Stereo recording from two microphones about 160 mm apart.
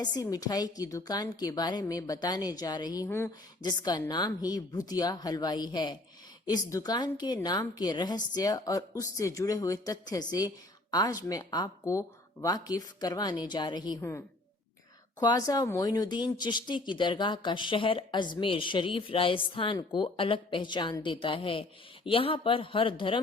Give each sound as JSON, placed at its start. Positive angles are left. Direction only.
{"t": 0.0, "sound": "a woman's voice", "side_deg": 25}
{"t": 3.6, "sound": "a woman's voice", "side_deg": 25}
{"t": 14.0, "sound": "speech", "side_deg": 15}